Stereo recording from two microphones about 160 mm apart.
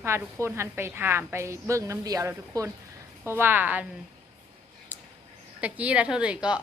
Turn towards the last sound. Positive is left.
turn(degrees=-5)  # may be behind; listen again after turning